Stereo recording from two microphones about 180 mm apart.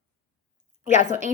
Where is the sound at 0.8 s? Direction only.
45° left (ahead or behind).